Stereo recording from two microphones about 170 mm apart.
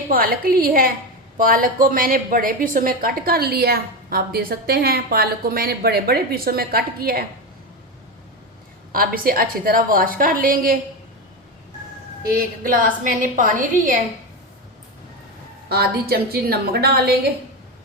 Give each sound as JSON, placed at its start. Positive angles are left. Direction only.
{"t": 0.1, "sound": "a woman's voice", "side_deg": -60}
{"t": 8.9, "sound": "a woman's voice", "side_deg": -60}
{"t": 12.3, "sound": "a woman's voice", "side_deg": -55}
{"t": 15.7, "sound": "a woman's voice", "side_deg": -65}